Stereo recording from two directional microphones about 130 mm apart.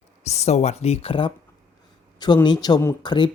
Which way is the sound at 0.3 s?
60° left (ahead or behind).